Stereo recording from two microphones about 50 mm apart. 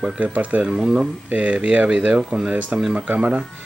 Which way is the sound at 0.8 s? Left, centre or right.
Centre.